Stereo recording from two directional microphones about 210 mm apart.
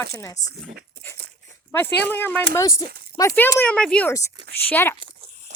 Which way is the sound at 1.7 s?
10° left (ahead or behind).